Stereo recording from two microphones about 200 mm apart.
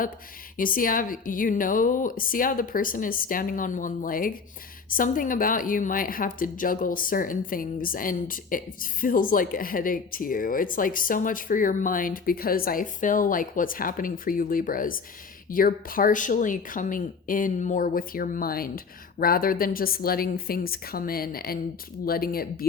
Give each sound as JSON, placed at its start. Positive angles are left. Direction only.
{"t": 0.5, "sound": "a woman's voice", "side_deg": 45}